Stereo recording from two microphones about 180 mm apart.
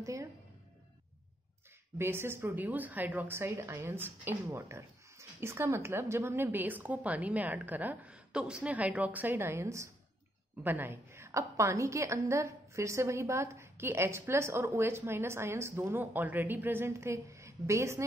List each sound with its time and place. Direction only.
0.0 s music: 15° right (ahead or behind)
2.0 s a woman's voice: 15° right (ahead or behind)